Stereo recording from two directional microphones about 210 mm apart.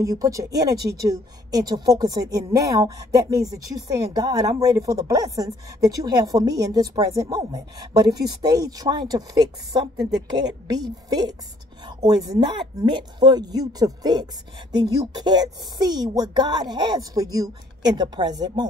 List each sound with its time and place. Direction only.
0.0 s a woman's voice: 15° right (ahead or behind)